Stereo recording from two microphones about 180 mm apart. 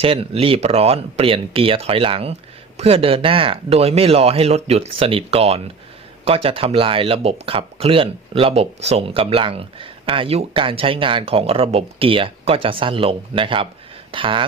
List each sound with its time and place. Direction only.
0.0 s speech: 30° right (ahead or behind)